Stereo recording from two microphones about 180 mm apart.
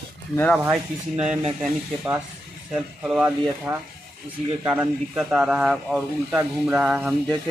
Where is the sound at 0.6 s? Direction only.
10° right (ahead or behind).